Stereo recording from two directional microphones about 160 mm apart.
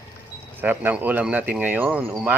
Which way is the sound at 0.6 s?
10° right (ahead or behind).